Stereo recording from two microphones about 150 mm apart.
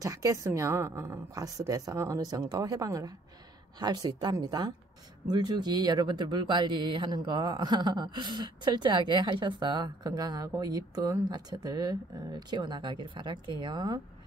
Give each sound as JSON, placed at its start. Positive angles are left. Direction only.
{"t": 0.0, "sound": "speech", "side_deg": -20}